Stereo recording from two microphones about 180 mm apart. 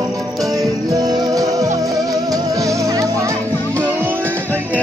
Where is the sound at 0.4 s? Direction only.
20° right (ahead or behind).